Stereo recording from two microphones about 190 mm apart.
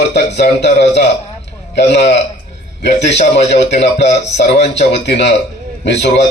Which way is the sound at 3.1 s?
35° left (ahead or behind).